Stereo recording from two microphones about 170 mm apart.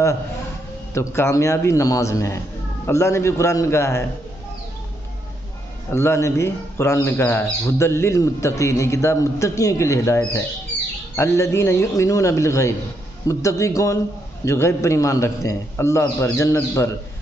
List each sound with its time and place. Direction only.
0.9 s speech: 15° left (ahead or behind)
5.9 s speech: 15° left (ahead or behind)